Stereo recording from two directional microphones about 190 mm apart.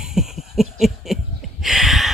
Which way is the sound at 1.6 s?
Centre (ahead or behind).